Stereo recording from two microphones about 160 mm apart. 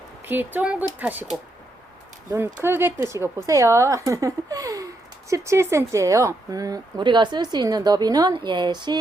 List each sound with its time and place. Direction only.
0.3 s speech: 10° right (ahead or behind)
2.6 s a woman's voice: 15° right (ahead or behind)